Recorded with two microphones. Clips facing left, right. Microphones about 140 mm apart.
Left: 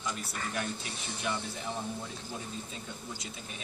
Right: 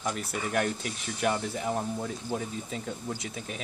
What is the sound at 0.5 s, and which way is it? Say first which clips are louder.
Speech: right 8 dB; 65° right (ahead or behind).